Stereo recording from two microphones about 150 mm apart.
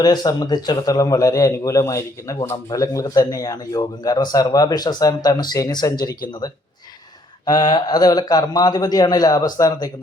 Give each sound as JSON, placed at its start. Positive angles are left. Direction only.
{"t": 0.0, "sound": "a man's voice", "side_deg": 25}
{"t": 7.4, "sound": "a man's voice", "side_deg": 25}